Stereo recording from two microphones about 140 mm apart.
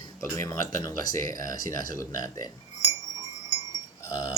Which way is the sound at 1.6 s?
75° right (ahead or behind).